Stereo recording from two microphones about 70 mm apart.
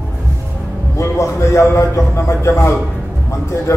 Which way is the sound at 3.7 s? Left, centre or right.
Left.